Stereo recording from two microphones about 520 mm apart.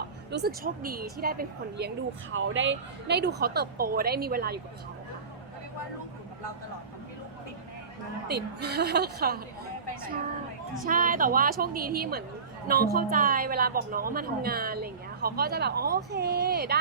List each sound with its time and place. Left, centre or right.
0.3 s a woman's voice: centre
8.3 s a woman's voice: centre
10.8 s a woman's voice: centre